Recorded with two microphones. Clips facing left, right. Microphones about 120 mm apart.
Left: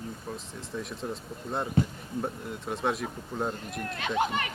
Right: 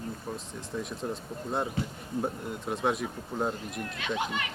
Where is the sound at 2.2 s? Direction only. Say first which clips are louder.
Right 1 dB; centre (ahead or behind).